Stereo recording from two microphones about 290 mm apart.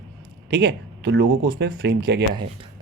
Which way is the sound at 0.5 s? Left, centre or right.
Right.